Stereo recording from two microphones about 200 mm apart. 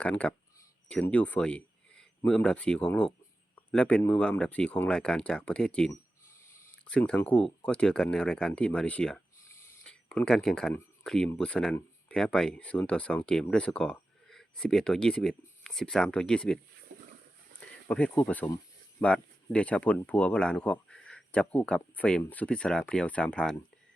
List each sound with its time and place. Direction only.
0.0 s speech: 5° left (ahead or behind)
17.8 s speech: 5° left (ahead or behind)